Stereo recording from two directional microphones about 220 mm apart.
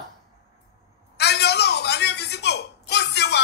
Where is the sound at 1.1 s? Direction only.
50° left (ahead or behind).